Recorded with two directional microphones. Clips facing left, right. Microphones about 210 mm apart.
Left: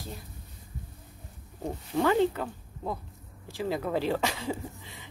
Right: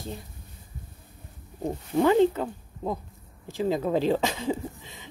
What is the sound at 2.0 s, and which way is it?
Speech, 20° right (ahead or behind).